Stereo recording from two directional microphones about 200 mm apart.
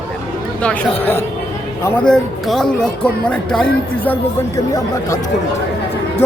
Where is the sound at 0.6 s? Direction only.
10° left (ahead or behind).